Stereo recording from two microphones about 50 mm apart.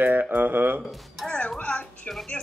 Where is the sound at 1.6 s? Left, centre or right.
Left.